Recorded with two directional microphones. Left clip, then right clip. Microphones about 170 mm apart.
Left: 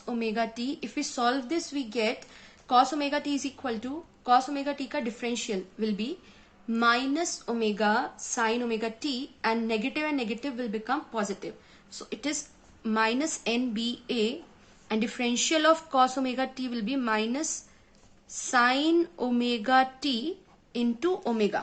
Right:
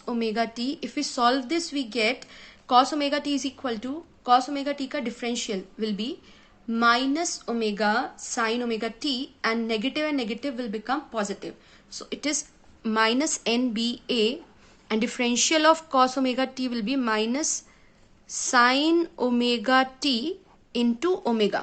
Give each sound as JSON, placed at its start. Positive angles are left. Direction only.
{"t": 0.0, "sound": "a woman's voice", "side_deg": -30}